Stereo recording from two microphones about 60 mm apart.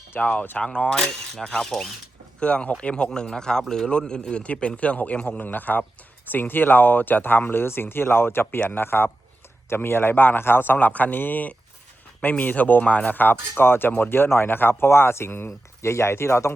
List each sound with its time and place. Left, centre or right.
0.2 s a man's voice: left; by 1.9 s centre
2.4 s a man's voice: centre; by 16.6 s left